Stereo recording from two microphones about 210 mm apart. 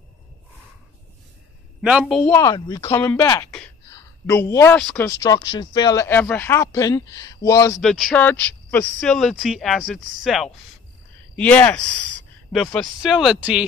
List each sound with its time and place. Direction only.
1.8 s speech: 5° right (ahead or behind)
2.3 s speech: 15° left (ahead or behind)
3.9 s a sound: 15° left (ahead or behind)
4.9 s speech: 15° left (ahead or behind)
7.8 s speech: centre (ahead or behind)